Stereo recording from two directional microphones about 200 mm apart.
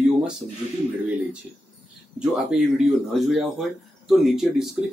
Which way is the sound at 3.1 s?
Centre (ahead or behind).